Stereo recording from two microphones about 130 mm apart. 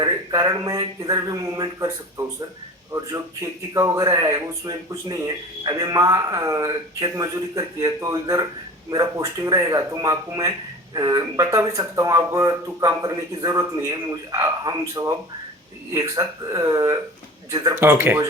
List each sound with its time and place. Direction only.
0.0 s a man's voice: 30° right (ahead or behind)